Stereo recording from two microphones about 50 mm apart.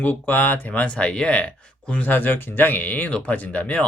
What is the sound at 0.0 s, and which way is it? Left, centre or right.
Speech, left.